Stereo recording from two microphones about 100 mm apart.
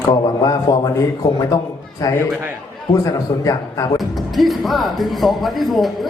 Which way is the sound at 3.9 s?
Centre (ahead or behind).